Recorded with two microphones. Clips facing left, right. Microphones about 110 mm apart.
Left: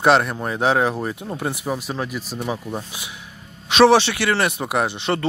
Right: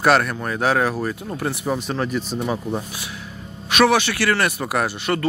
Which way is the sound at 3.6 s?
25° left (ahead or behind).